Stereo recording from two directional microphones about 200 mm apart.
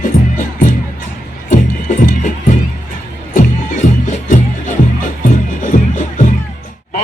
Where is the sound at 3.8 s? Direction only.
35° left (ahead or behind).